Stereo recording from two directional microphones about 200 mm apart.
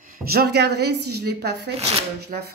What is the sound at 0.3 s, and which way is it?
A woman's voice, 55° right (ahead or behind).